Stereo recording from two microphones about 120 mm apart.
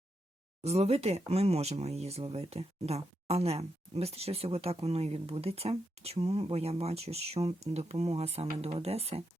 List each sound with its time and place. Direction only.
0.6 s speech: 60° right (ahead or behind)